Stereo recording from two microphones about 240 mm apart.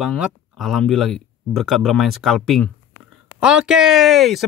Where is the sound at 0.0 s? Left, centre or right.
Centre.